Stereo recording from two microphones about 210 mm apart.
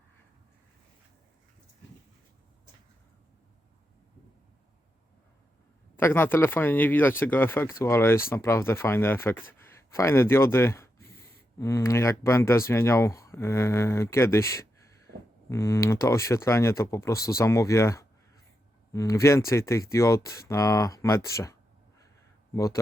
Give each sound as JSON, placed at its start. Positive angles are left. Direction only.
{"t": 6.0, "sound": "speech", "side_deg": 10}